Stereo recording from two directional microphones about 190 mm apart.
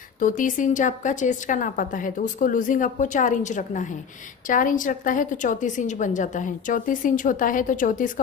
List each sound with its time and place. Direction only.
0.2 s a woman's voice: 45° left (ahead or behind)